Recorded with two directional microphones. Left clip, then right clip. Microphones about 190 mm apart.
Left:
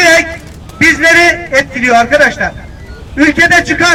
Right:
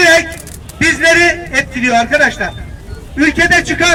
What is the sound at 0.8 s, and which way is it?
A man's voice, 25° left (ahead or behind).